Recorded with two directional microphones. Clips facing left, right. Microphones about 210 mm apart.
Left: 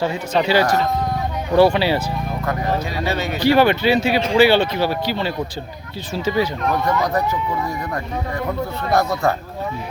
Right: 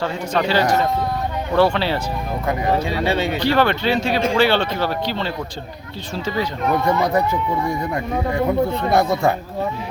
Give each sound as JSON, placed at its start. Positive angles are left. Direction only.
{"t": 0.0, "sound": "speech", "side_deg": 10}
{"t": 2.7, "sound": "speech", "side_deg": -30}
{"t": 3.4, "sound": "speech", "side_deg": 10}